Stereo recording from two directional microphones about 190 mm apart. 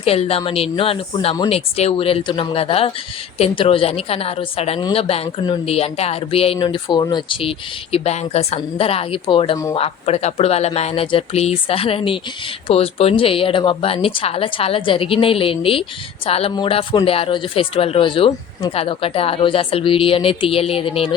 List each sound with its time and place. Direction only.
0.0 s a woman's voice: 30° left (ahead or behind)